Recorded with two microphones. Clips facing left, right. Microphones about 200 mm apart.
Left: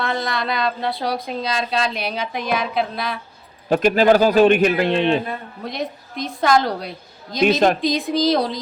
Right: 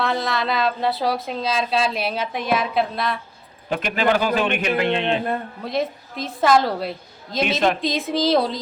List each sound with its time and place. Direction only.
0.0 s speech: centre (ahead or behind)
3.7 s a man's voice: 40° left (ahead or behind)
5.6 s speech: 5° right (ahead or behind)